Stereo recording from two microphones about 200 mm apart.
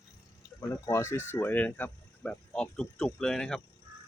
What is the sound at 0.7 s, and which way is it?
Speech, 15° left (ahead or behind).